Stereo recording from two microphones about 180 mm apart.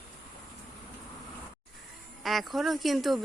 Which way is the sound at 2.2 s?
Centre (ahead or behind).